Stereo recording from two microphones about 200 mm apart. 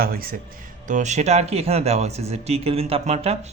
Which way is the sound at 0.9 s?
35° right (ahead or behind).